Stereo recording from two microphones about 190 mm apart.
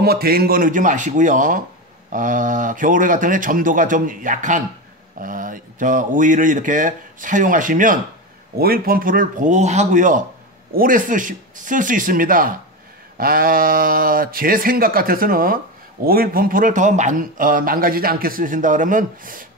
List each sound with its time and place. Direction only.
0.0 s speech: 55° right (ahead or behind)